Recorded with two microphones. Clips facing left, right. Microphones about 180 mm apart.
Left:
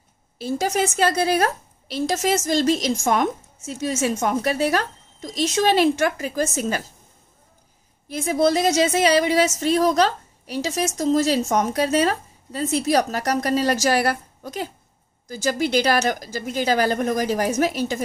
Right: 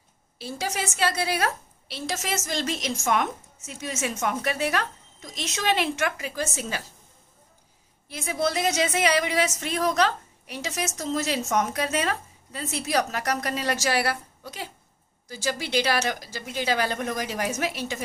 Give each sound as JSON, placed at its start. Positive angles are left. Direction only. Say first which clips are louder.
{"t": 0.4, "sound": "speech", "louder": "left 9 dB", "side_deg": 45}
{"t": 8.1, "sound": "speech", "louder": "left 8 dB", "side_deg": 40}